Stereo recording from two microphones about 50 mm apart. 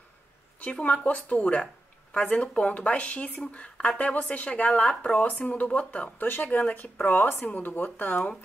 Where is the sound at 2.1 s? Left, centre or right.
Left.